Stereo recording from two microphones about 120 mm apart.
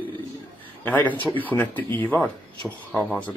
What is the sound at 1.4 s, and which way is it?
Speech, 15° left (ahead or behind).